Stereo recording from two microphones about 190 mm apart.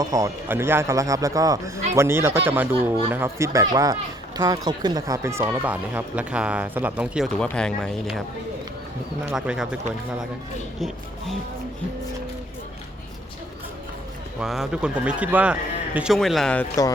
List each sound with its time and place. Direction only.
0.0 s speech: 15° right (ahead or behind); by 8.2 s centre (ahead or behind)
9.2 s speech: 5° right (ahead or behind)
10.8 s speech: centre (ahead or behind)
14.3 s speech: centre (ahead or behind)